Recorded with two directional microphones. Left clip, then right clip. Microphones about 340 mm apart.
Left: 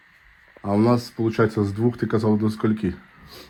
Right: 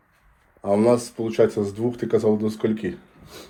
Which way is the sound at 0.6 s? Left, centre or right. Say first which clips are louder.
Right 2 dB; centre.